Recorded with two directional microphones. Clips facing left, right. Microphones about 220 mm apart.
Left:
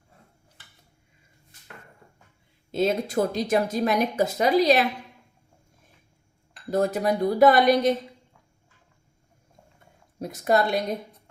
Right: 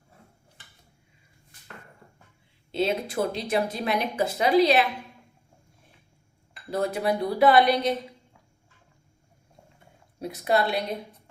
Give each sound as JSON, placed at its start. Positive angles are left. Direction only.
{"t": 2.7, "sound": "speech", "side_deg": 45}
{"t": 6.7, "sound": "speech", "side_deg": 45}
{"t": 10.2, "sound": "speech", "side_deg": 45}